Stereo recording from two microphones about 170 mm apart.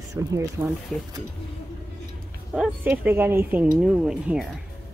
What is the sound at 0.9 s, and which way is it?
Speech, 5° left (ahead or behind).